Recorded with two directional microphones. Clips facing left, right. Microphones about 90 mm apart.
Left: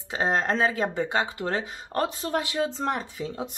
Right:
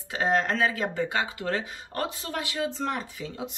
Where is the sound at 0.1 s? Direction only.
25° left (ahead or behind).